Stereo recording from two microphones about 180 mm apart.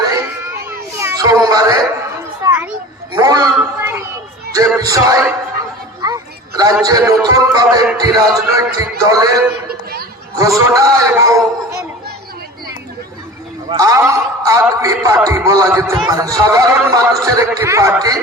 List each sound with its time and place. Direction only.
0.0 s a sound: 15° right (ahead or behind)
2.4 s children playing: 10° right (ahead or behind)
3.1 s a sound: 20° right (ahead or behind)
3.8 s children playing: 15° right (ahead or behind)
4.8 s a man's voice: 20° right (ahead or behind)
6.0 s music: 20° right (ahead or behind)
6.8 s a man's voice: 20° right (ahead or behind)
10.6 s a man's voice: 20° right (ahead or behind)
13.7 s a man's voice: 20° right (ahead or behind)